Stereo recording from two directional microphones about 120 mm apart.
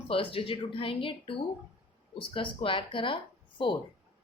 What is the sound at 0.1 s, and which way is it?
Speech, 50° left (ahead or behind).